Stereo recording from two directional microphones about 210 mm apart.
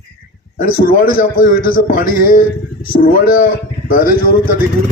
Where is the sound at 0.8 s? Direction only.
45° left (ahead or behind).